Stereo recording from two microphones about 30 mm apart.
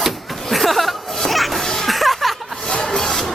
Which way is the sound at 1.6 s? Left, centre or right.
Centre.